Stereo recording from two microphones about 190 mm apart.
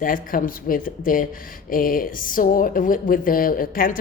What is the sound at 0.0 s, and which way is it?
Speech, 45° left (ahead or behind).